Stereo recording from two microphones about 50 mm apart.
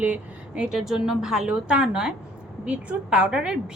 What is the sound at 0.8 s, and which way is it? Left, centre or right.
Speech, centre.